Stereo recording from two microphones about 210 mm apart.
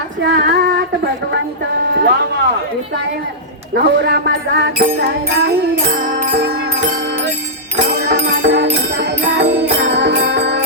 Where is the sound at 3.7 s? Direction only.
55° right (ahead or behind).